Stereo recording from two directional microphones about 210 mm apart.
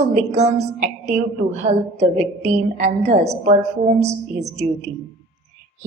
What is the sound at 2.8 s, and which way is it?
Speech, 35° right (ahead or behind).